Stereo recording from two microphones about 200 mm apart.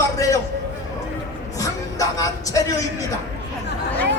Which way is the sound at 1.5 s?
15° left (ahead or behind).